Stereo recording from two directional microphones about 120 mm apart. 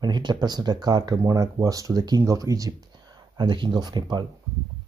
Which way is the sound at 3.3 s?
40° right (ahead or behind).